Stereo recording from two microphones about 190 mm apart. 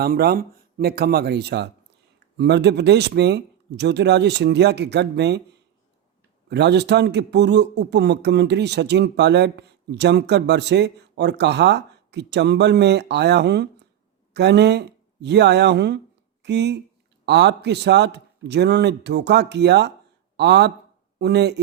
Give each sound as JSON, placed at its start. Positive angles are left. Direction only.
{"t": 0.0, "sound": "speech", "side_deg": -55}
{"t": 6.5, "sound": "speech", "side_deg": -65}